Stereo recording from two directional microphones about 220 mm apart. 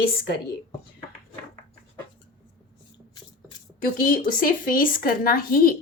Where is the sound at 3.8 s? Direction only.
40° left (ahead or behind).